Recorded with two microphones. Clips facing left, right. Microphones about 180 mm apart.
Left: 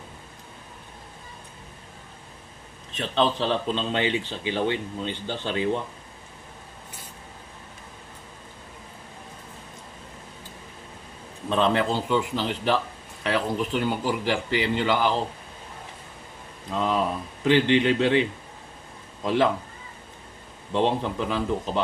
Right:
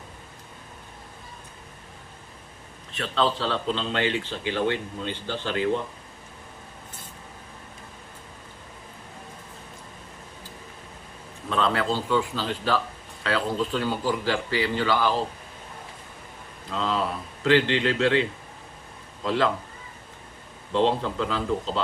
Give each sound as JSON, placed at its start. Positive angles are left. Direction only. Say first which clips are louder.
{"t": 2.9, "sound": "speech", "louder": "left 1 dB", "side_deg": 20}
{"t": 11.4, "sound": "speech", "louder": "left 2 dB", "side_deg": 20}
{"t": 16.7, "sound": "speech", "louder": "left 2 dB", "side_deg": 15}
{"t": 20.7, "sound": "speech", "louder": "right 1 dB", "side_deg": 15}